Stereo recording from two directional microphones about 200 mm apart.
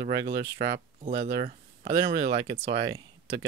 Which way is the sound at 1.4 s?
30° right (ahead or behind).